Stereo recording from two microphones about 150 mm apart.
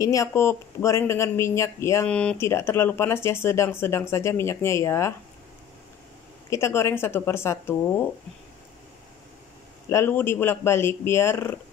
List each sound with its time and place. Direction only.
0.0 s speech: 20° left (ahead or behind)
6.5 s speech: 15° left (ahead or behind)
9.8 s speech: 15° left (ahead or behind)